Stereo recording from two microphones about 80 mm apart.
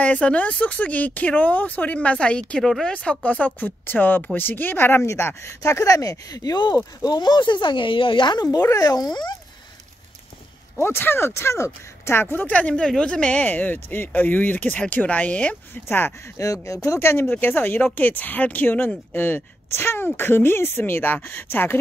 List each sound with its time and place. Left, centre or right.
0.0 s speech: centre; by 8.5 s left
8.7 s speech: left
10.8 s speech: left
16.6 s speech: left